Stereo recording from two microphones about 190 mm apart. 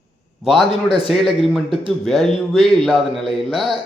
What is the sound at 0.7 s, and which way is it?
Speech, 30° left (ahead or behind).